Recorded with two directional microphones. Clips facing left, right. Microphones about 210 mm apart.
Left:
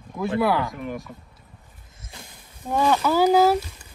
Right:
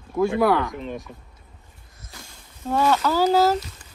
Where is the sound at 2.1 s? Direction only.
20° left (ahead or behind).